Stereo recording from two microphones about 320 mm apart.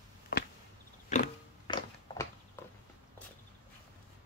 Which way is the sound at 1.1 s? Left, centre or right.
Left.